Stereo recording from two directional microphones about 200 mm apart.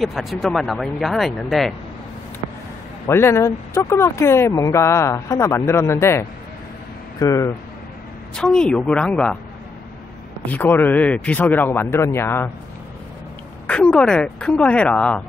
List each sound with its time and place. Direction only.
0.0 s speech: centre (ahead or behind)
3.1 s speech: 10° left (ahead or behind)
8.4 s speech: 5° left (ahead or behind)
10.4 s speech: 10° left (ahead or behind)
13.7 s speech: 5° left (ahead or behind)